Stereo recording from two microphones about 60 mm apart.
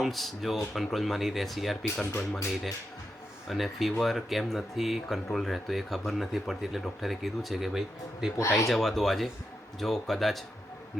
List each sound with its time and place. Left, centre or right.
0.0 s speech: centre
3.4 s speech: centre
8.4 s speech: left
8.6 s speech: centre